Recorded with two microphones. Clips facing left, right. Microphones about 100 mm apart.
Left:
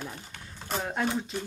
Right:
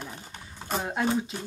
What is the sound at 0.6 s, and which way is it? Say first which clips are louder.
Speech: right 2 dB; 10° right (ahead or behind).